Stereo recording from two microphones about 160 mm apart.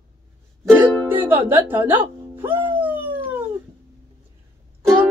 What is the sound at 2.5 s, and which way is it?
Dog, 30° right (ahead or behind).